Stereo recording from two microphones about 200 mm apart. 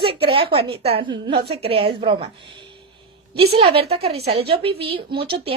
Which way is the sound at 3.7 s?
30° right (ahead or behind).